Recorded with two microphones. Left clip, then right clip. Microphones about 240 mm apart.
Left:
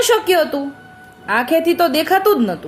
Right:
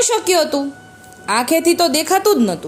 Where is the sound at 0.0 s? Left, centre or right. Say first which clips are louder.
Left 1 dB; centre.